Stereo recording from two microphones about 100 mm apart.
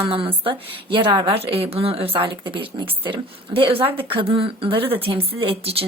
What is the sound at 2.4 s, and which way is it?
A woman's voice, 55° right (ahead or behind).